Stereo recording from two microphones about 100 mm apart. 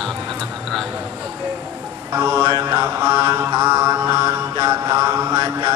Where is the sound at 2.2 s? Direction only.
30° right (ahead or behind).